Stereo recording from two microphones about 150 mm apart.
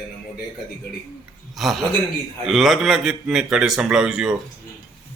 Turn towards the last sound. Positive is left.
turn(degrees=-5)  # may be behind; listen again after turning